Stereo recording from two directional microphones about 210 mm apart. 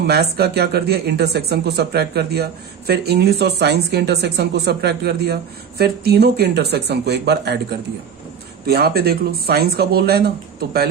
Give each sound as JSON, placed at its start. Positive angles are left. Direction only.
{"t": 0.0, "sound": "speech", "side_deg": -50}
{"t": 8.6, "sound": "speech", "side_deg": -50}